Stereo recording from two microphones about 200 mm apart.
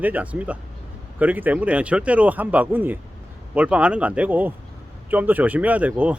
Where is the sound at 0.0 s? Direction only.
10° right (ahead or behind).